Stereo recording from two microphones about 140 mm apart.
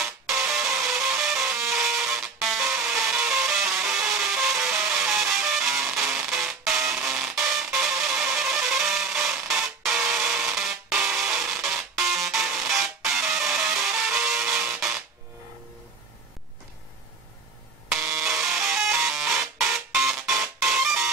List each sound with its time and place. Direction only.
0.5 s music: 5° right (ahead or behind)
3.8 s a sound: 5° right (ahead or behind)
4.7 s music: 5° right (ahead or behind)
17.9 s printer: 20° right (ahead or behind)
18.2 s printer: 5° right (ahead or behind)
20.5 s music: 5° right (ahead or behind)